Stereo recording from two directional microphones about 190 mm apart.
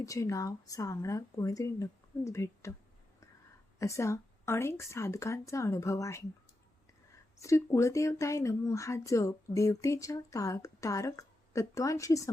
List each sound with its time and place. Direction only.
0.0 s speech: 15° left (ahead or behind)
3.8 s speech: 15° left (ahead or behind)
7.4 s speech: 15° left (ahead or behind)